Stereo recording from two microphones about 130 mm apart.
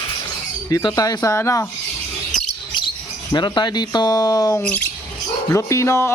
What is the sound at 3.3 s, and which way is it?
Speech, 35° left (ahead or behind).